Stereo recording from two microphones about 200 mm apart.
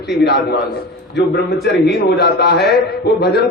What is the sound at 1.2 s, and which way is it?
A man's voice, 55° left (ahead or behind).